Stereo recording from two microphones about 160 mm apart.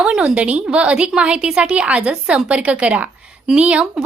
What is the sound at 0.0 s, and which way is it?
A woman's voice, 5° right (ahead or behind).